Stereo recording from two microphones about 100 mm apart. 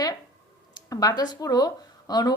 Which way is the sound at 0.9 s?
40° left (ahead or behind).